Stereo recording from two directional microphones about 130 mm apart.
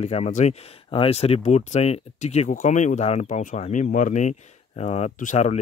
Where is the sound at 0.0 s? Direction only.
55° left (ahead or behind).